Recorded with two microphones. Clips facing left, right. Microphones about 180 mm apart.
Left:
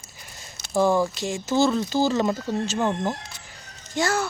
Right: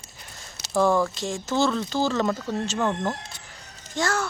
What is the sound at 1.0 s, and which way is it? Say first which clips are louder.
Speech: left 1 dB; 15° left (ahead or behind).